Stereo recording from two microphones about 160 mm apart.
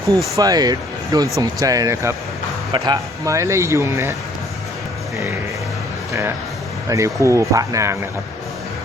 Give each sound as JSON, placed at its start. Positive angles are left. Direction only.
{"t": 0.3, "sound": "speech", "side_deg": -25}
{"t": 6.8, "sound": "speech", "side_deg": -20}